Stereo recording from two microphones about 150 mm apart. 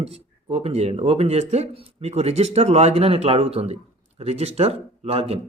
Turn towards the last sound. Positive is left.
turn(degrees=-45)  # may be behind; listen again after turning